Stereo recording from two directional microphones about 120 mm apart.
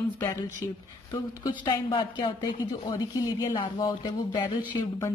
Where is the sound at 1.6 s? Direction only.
40° left (ahead or behind).